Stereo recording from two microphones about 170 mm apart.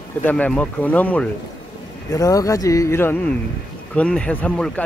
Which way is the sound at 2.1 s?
20° left (ahead or behind).